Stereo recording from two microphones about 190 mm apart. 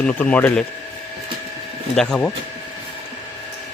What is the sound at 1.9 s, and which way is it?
Speech, 5° left (ahead or behind).